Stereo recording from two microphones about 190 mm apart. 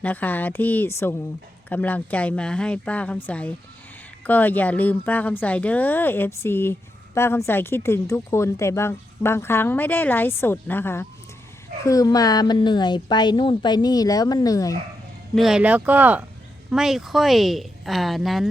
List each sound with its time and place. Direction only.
0.0 s a woman's voice: 10° left (ahead or behind)
15.4 s a woman's voice: 5° right (ahead or behind)